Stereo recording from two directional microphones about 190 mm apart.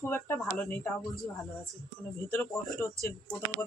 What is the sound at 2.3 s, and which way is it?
Speech, 15° left (ahead or behind).